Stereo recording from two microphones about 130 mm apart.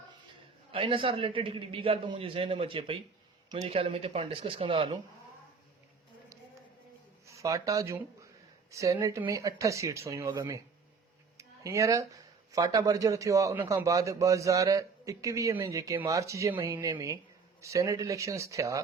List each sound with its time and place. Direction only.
0.7 s a man's voice: 45° right (ahead or behind)
7.3 s a man's voice: 25° right (ahead or behind)